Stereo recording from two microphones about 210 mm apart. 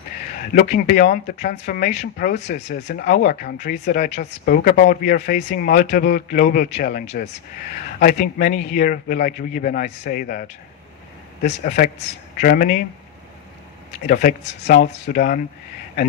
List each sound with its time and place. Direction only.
0.5 s speech: 40° left (ahead or behind)
11.4 s speech: 40° left (ahead or behind)
14.1 s speech: 40° left (ahead or behind)